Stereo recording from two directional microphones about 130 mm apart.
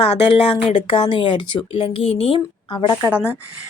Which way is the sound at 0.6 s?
45° left (ahead or behind).